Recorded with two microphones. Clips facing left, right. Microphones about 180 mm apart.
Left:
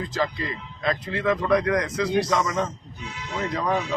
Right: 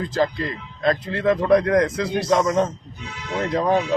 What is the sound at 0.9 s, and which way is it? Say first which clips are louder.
A man's voice: right 4 dB; 35° right (ahead or behind).